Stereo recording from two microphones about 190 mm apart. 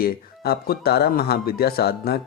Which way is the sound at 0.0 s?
55° left (ahead or behind).